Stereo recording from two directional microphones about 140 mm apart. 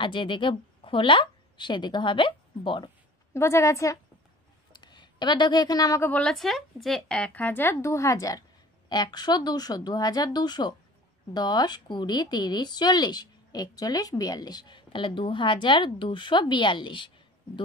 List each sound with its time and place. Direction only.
0.0 s a woman's voice: 35° left (ahead or behind)
3.3 s a woman's voice: 20° left (ahead or behind)
4.7 s a woman's voice: 30° left (ahead or behind)